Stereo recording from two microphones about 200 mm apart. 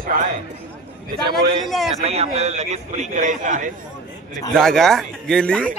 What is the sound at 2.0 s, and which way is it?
A man's voice, 30° right (ahead or behind).